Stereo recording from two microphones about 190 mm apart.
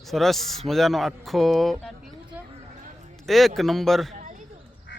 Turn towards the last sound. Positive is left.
turn(degrees=0)  # may be behind; listen again after turning